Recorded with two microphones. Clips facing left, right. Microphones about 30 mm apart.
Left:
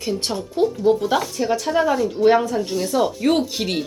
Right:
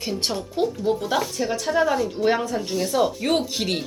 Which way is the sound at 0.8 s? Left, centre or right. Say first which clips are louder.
Left 5 dB; centre.